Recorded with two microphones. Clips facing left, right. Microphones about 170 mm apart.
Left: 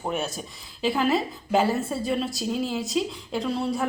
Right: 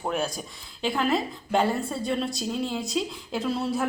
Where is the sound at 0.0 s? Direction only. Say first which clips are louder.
Right 1 dB; centre (ahead or behind).